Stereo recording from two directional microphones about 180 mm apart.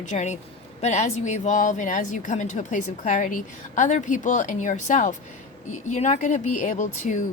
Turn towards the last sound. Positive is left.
turn(degrees=45)  # may be behind; listen again after turning